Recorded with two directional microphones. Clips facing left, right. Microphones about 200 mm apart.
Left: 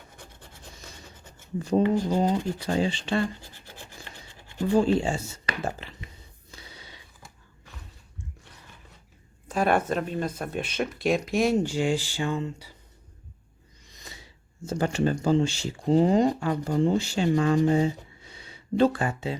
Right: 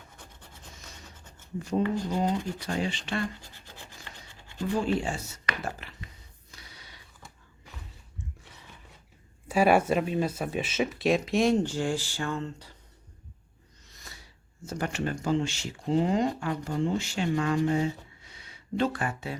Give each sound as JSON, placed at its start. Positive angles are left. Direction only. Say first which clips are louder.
{"t": 1.7, "sound": "speech", "louder": "left 5 dB", "side_deg": 40}
{"t": 4.4, "sound": "scratch", "louder": "left 4 dB", "side_deg": 15}
{"t": 4.7, "sound": "speech", "louder": "left 6 dB", "side_deg": 30}
{"t": 6.5, "sound": "a sound", "louder": "left 5 dB", "side_deg": 25}
{"t": 9.5, "sound": "speech", "louder": "right 2 dB", "side_deg": -10}
{"t": 13.8, "sound": "speech", "louder": "left 4 dB", "side_deg": 15}